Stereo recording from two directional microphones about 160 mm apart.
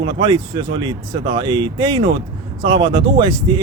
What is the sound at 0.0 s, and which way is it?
Speech, 30° right (ahead or behind).